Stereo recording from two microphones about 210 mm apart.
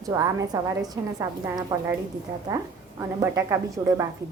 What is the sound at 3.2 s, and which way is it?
Speech, 15° right (ahead or behind).